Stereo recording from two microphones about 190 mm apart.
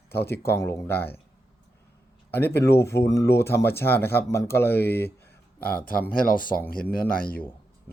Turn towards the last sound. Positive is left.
turn(degrees=50)  # may be behind; listen again after turning